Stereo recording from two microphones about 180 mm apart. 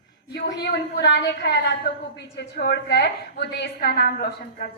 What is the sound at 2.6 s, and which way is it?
A woman's voice, 65° left (ahead or behind).